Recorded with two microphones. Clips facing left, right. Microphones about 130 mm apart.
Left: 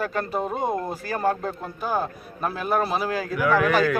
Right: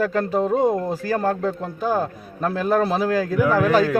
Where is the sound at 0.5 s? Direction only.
90° right.